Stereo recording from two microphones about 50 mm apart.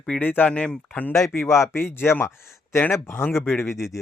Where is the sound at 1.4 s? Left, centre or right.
Left.